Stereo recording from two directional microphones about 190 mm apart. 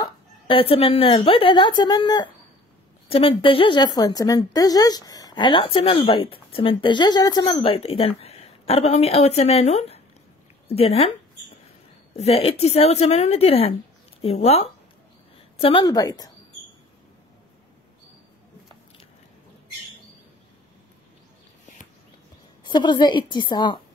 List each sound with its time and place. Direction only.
0.0 s a woman's voice: 30° left (ahead or behind)
12.1 s a woman's voice: 30° left (ahead or behind)
22.6 s a woman's voice: 25° left (ahead or behind)